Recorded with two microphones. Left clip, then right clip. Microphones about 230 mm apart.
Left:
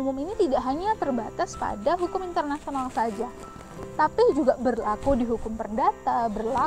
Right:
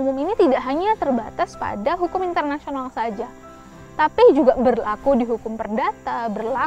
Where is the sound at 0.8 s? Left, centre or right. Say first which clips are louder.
Right 6 dB; right.